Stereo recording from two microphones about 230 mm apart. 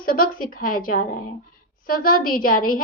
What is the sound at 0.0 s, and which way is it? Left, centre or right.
A woman's voice, left.